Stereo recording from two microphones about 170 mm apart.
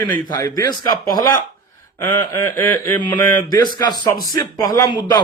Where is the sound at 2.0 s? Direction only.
15° left (ahead or behind).